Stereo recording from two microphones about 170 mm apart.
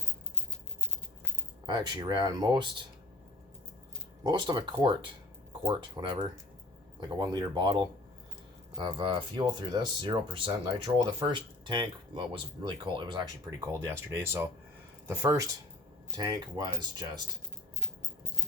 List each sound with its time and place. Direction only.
1.6 s speech: 25° right (ahead or behind)
4.2 s speech: 25° right (ahead or behind)
13.7 s speech: 15° right (ahead or behind)